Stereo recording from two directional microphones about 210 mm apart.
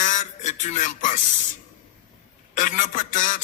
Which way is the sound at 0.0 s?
35° left (ahead or behind).